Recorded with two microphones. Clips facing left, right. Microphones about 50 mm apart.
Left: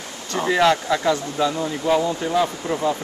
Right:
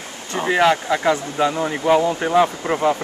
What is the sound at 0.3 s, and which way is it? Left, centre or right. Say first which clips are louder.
Speech: right 1 dB; right.